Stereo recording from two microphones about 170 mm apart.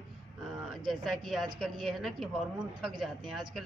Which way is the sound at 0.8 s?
Centre (ahead or behind).